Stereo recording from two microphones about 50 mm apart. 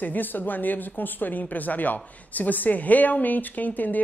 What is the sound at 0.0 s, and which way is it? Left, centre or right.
A woman's voice, left.